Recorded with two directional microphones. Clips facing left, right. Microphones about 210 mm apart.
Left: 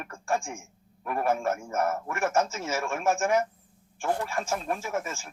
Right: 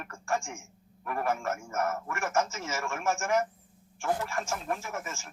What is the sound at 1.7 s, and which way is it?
A man's voice, 35° left (ahead or behind).